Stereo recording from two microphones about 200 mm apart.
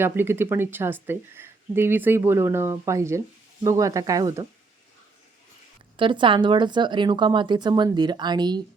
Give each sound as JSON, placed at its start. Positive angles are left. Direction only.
{"t": 0.0, "sound": "speech", "side_deg": -10}
{"t": 6.0, "sound": "speech", "side_deg": -25}